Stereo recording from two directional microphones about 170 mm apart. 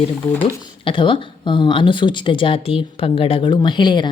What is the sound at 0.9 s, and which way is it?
A woman's voice, 30° left (ahead or behind).